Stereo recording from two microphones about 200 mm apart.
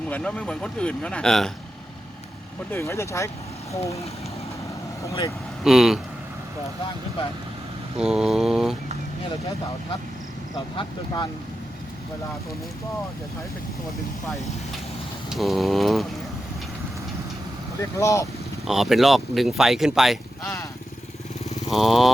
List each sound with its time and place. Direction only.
0.1 s speech: 5° left (ahead or behind)
2.6 s speech: 15° left (ahead or behind)
5.0 s speech: 15° left (ahead or behind)
5.6 s speech: centre (ahead or behind)
7.9 s mantra: 5° right (ahead or behind)
10.8 s speech: 20° left (ahead or behind)
15.3 s speech: centre (ahead or behind)
17.7 s speech: 15° left (ahead or behind)
18.6 s speech: centre (ahead or behind)
20.4 s speech: 15° left (ahead or behind)
21.7 s speech: centre (ahead or behind)